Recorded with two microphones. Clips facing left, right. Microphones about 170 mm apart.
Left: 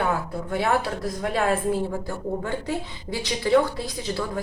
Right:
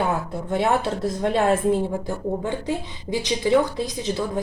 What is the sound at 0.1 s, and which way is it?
A woman's voice, 25° right (ahead or behind).